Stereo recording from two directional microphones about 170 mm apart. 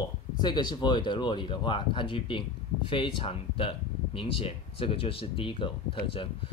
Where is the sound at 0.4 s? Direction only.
25° left (ahead or behind).